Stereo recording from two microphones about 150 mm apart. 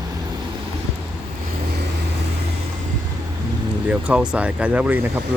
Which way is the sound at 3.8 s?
10° right (ahead or behind).